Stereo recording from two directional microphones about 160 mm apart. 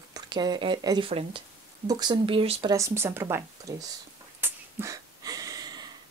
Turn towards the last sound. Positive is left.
turn(degrees=-25)  # may be behind; listen again after turning